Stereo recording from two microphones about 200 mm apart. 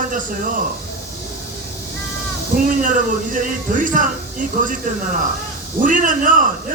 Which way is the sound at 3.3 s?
40° right (ahead or behind).